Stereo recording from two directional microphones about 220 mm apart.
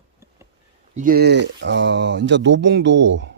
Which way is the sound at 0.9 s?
40° right (ahead or behind).